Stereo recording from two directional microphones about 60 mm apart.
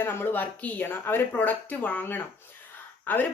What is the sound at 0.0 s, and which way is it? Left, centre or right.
Speech, left.